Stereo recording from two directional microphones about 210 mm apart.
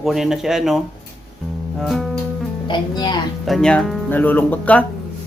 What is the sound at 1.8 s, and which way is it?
Speech, centre (ahead or behind).